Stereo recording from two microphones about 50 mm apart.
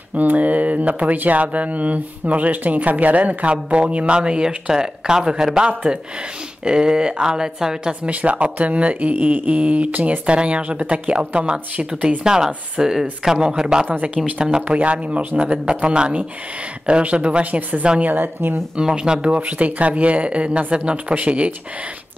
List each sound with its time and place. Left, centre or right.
0.1 s speech: right; by 8.1 s centre
8.1 s speech: right; by 13.8 s centre
14.0 s speech: right
14.8 s speech: right
18.8 s speech: centre